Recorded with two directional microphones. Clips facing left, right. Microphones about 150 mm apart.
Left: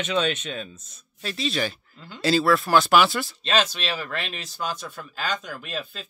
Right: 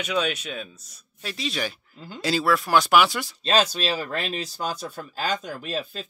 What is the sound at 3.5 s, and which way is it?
Speech, 35° right (ahead or behind).